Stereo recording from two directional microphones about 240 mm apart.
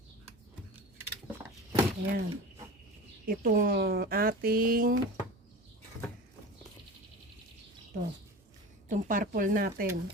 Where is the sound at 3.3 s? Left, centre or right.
Right.